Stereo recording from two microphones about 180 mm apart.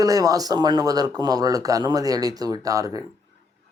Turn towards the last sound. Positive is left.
turn(degrees=-20)  # may be behind; listen again after turning